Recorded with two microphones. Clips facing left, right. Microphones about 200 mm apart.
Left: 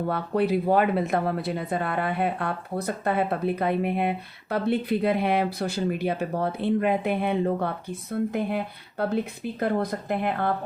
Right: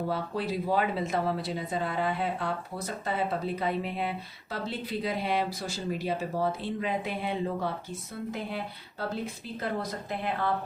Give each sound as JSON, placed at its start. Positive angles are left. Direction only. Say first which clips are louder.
{"t": 0.1, "sound": "speech", "louder": "left 7 dB", "side_deg": 60}